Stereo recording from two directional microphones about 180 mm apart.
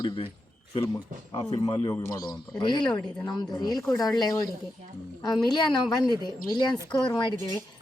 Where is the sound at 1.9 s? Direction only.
15° left (ahead or behind).